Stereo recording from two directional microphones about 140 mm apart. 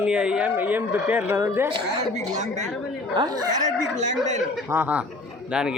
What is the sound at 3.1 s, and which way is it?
Speech, 30° right (ahead or behind).